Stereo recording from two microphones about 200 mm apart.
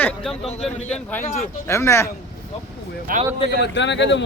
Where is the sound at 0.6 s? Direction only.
5° left (ahead or behind).